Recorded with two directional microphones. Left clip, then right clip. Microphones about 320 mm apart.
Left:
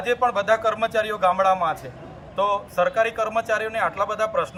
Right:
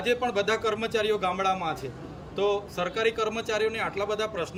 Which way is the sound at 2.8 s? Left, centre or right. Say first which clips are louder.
Left 2 dB; centre.